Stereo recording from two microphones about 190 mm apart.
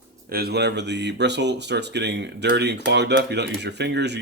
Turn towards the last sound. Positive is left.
turn(degrees=-65)  # may be behind; listen again after turning